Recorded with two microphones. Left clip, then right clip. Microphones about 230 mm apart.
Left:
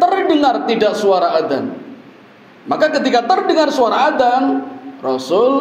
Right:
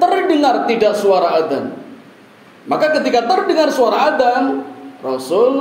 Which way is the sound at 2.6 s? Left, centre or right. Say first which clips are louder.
Even; left.